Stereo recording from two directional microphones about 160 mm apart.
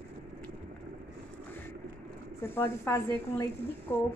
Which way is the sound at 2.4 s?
15° left (ahead or behind).